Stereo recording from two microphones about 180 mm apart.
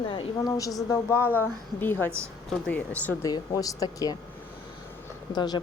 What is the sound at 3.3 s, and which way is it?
Speech, 20° left (ahead or behind).